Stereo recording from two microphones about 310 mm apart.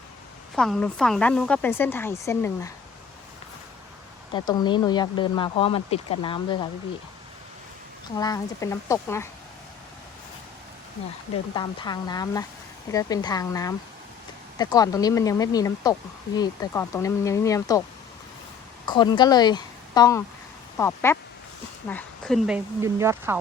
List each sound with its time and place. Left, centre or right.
0.5 s speech: centre
4.4 s speech: centre
8.2 s speech: centre
11.5 s speech: centre
18.9 s a woman's voice: centre